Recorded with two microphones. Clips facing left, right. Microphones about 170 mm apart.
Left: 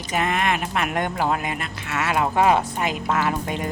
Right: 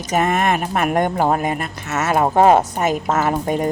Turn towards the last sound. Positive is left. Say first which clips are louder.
# right 5 dB
turn(degrees=-45)  # may be behind; listen again after turning